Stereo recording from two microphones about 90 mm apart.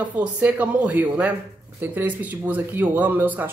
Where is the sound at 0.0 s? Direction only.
15° right (ahead or behind).